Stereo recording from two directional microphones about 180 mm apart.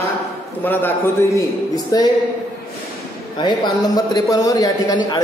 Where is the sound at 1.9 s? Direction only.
20° left (ahead or behind).